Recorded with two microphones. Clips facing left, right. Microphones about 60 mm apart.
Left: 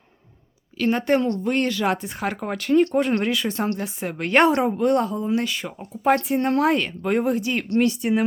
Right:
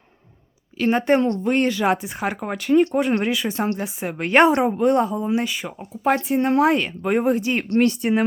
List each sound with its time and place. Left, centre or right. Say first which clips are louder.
0.8 s a woman's voice: right 2 dB; right
7.3 s speech: right 2 dB; right
7.8 s speech: right 1 dB; right